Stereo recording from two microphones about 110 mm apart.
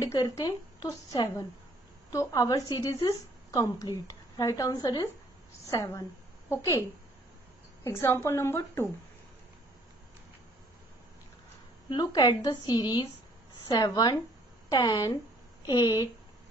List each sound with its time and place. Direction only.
0.0 s a woman's voice: 30° left (ahead or behind)
7.8 s a woman's voice: 20° left (ahead or behind)
11.9 s a woman's voice: 40° left (ahead or behind)